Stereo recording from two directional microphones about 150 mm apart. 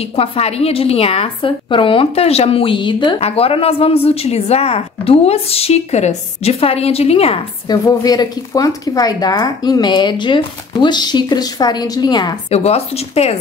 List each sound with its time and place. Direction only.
0.0 s a woman's voice: 40° left (ahead or behind)
7.6 s speech: 25° left (ahead or behind)
12.4 s speech: 45° left (ahead or behind)